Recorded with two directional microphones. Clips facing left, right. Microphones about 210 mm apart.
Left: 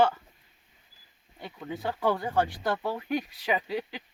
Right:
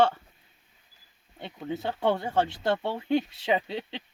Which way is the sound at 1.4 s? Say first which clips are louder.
Right 2 dB; 25° right (ahead or behind).